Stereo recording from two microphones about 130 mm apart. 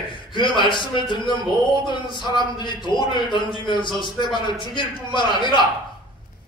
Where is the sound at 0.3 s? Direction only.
40° left (ahead or behind).